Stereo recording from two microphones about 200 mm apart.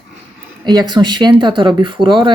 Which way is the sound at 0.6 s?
20° right (ahead or behind).